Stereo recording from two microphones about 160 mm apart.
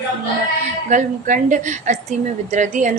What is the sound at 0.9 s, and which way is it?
A woman's voice, 50° right (ahead or behind).